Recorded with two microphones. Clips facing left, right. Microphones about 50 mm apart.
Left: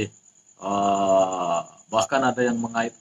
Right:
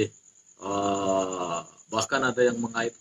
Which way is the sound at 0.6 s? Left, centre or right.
Left.